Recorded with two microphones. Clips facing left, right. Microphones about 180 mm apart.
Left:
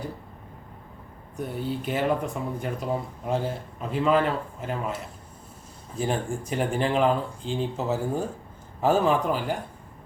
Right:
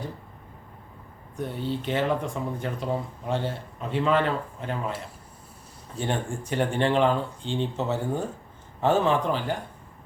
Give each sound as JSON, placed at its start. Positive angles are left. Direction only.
{"t": 1.4, "sound": "speech", "side_deg": 5}
{"t": 6.0, "sound": "speech", "side_deg": 0}